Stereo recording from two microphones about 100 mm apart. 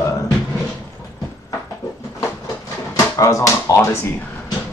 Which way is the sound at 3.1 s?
35° left (ahead or behind).